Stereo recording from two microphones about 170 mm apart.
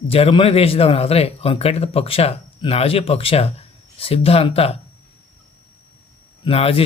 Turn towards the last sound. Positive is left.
turn(degrees=35)  # may be behind; listen again after turning